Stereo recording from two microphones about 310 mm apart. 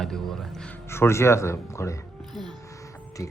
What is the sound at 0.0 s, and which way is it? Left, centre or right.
Speech, centre.